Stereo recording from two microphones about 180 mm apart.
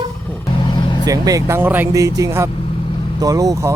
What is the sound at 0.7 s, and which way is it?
Vehicle, 25° left (ahead or behind).